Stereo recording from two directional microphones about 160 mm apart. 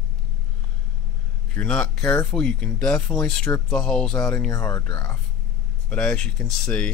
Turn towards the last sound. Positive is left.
turn(degrees=5)  # may be behind; listen again after turning